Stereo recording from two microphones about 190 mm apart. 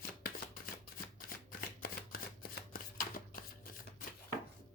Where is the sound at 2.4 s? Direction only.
50° left (ahead or behind).